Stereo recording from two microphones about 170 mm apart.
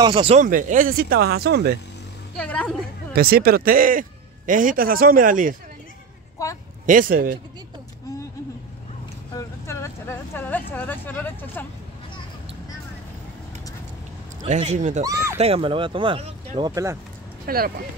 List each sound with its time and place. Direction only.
0.0 s speech: 30° right (ahead or behind)
0.4 s a man's voice: 50° right (ahead or behind); by 1.8 s 70° right (ahead or behind)
2.3 s speech: 5° left (ahead or behind)
3.1 s a man's voice: 65° right (ahead or behind)
6.3 s a sound: 20° left (ahead or behind)
6.9 s a man's voice: 55° right (ahead or behind)
9.3 s a sound: 15° left (ahead or behind)
14.4 s a man's voice: 45° right (ahead or behind)
15.0 s speech: 20° right (ahead or behind)
15.3 s speech: 35° right (ahead or behind)
16.7 s speech: 15° right (ahead or behind)
17.5 s a man's voice: 60° right (ahead or behind)